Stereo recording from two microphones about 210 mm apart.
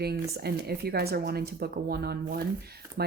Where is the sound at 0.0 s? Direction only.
50° right (ahead or behind).